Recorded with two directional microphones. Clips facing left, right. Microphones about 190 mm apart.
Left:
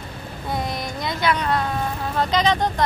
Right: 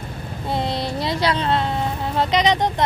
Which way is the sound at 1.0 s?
30° right (ahead or behind).